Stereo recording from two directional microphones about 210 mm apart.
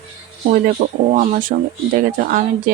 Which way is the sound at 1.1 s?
40° right (ahead or behind).